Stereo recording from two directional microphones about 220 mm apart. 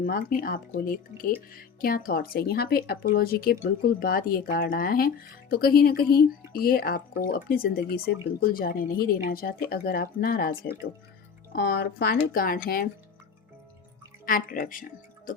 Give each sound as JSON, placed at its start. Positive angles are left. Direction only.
{"t": 0.0, "sound": "speech", "side_deg": 40}
{"t": 11.5, "sound": "speech", "side_deg": 45}
{"t": 14.3, "sound": "speech", "side_deg": 40}